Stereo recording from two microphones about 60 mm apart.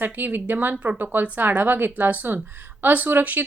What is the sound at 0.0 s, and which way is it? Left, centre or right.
Speech, right.